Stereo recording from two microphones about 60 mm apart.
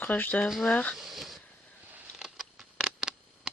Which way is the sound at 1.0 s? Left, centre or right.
Centre.